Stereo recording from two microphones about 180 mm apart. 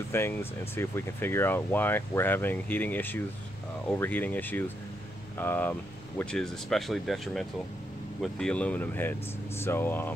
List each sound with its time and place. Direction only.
0.1 s speech: 15° left (ahead or behind)